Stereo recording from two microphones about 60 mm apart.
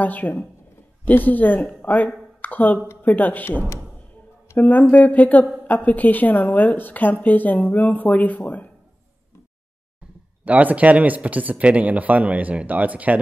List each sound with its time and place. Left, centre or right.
0.0 s a woman's voice: left
10.4 s speech: right